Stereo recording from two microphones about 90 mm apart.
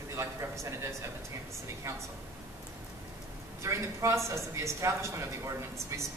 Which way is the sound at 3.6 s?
35° right (ahead or behind).